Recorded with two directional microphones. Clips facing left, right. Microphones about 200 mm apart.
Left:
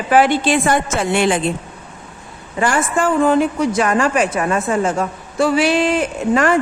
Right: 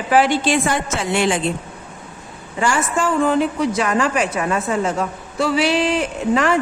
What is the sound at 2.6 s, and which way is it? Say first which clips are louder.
A woman's voice: left 2 dB; 55° left (ahead or behind).